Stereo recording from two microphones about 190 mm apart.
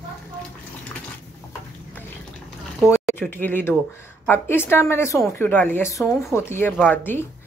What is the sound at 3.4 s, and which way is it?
Speech, 10° left (ahead or behind).